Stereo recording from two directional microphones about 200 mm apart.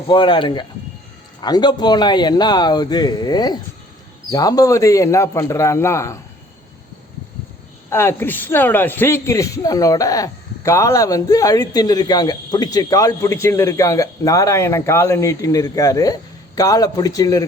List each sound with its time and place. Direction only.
0.1 s a man's voice: 25° left (ahead or behind)
7.9 s speech: 10° left (ahead or behind)